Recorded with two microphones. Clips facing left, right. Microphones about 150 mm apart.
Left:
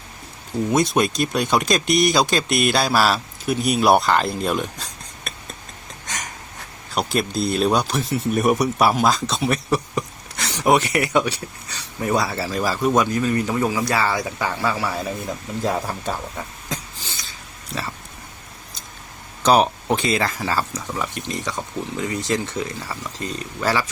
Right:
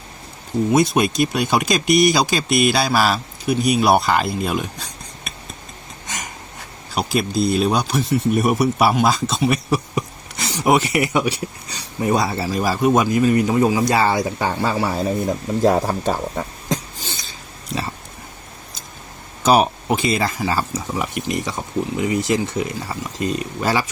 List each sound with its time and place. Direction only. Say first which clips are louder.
0.7 s speech: right 2 dB; 10° right (ahead or behind)
6.9 s speech: right 2 dB; centre (ahead or behind); by 14.9 s 30° right (ahead or behind)
15.6 s speech: right 7 dB; 45° right (ahead or behind)
19.5 s speech: right 1 dB; 5° right (ahead or behind)